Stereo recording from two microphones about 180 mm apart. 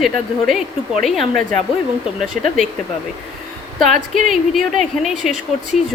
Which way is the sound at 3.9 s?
45° right (ahead or behind).